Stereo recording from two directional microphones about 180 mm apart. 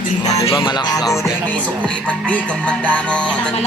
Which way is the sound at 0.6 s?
25° left (ahead or behind).